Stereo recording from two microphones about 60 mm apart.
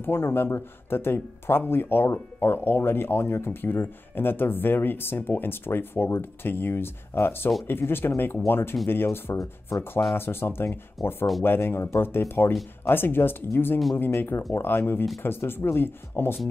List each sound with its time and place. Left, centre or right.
0.0 s speech: left
11.0 s speech: centre
11.4 s speech: left